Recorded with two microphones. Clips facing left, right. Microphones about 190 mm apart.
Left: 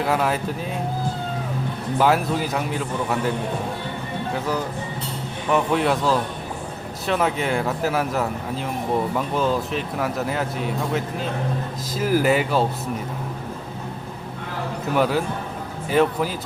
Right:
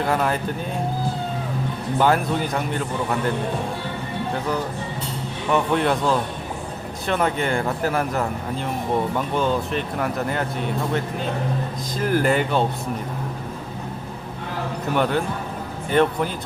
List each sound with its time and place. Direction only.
0.0 s speech: 5° left (ahead or behind)
2.0 s speech: 5° left (ahead or behind)
5.5 s speech: centre (ahead or behind)
14.9 s speech: 5° left (ahead or behind)